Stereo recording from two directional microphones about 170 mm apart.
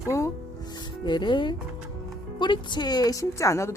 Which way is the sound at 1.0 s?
30° left (ahead or behind).